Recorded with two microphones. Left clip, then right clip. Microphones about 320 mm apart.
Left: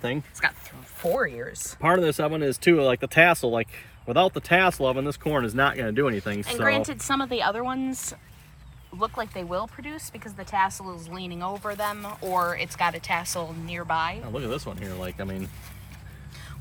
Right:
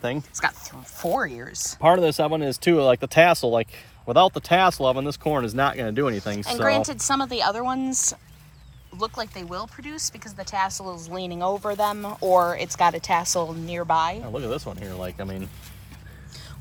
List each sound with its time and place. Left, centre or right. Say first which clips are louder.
0.0 s speech: right 1 dB; centre
1.5 s speech: right 7 dB; centre
1.8 s speech: right 4 dB; centre